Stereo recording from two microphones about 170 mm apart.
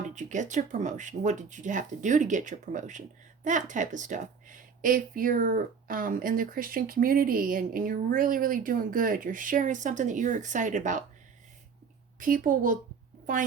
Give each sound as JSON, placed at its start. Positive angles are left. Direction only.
{"t": 0.1, "sound": "speech", "side_deg": -45}
{"t": 12.2, "sound": "speech", "side_deg": -50}